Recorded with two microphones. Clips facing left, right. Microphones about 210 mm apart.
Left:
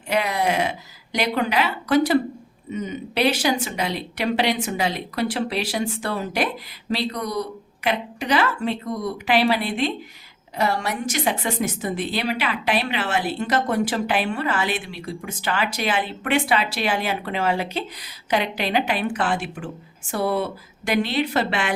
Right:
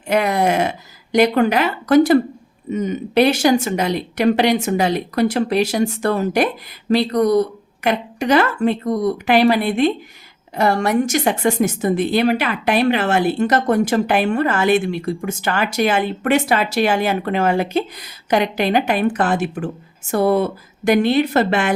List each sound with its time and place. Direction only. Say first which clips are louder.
0.1 s a woman's voice: right 5 dB; 50° right (ahead or behind)